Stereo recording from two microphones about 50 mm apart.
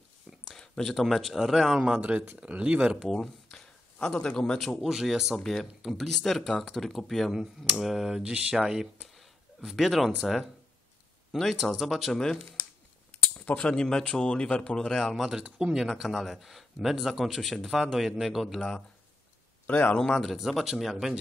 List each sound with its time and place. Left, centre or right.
0.5 s speech: centre
2.0 s speech: right
3.0 s speech: centre
4.0 s speech: centre
4.8 s speech: centre
5.4 s speech: centre
8.1 s speech: centre
12.1 s speech: centre
13.1 s cutlery: left
13.7 s speech: centre
15.5 s speech: centre
15.9 s speech: centre
19.6 s speech: left
20.2 s speech: centre